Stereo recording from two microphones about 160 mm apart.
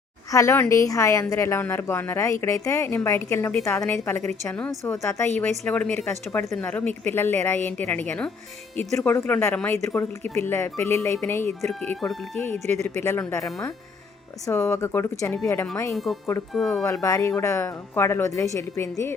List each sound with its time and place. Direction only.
0.3 s a woman's voice: 20° left (ahead or behind)
16.5 s speech: 5° left (ahead or behind)
16.8 s a woman's voice: 20° left (ahead or behind)